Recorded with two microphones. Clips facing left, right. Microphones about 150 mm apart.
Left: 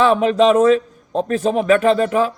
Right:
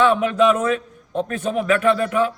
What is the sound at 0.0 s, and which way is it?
A man's voice, 35° left (ahead or behind).